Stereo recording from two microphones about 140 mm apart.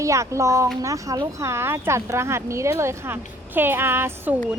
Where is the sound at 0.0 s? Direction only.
20° right (ahead or behind).